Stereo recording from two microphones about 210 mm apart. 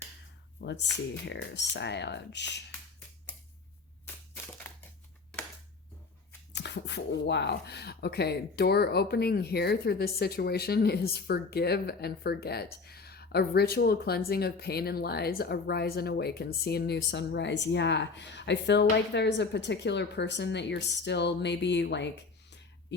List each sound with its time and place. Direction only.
0.6 s speech: 55° left (ahead or behind)
4.7 s crushing: 10° left (ahead or behind)
6.5 s speech: 55° left (ahead or behind)